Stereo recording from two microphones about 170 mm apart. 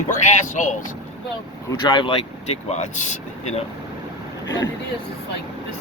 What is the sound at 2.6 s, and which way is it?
Speech, 40° left (ahead or behind).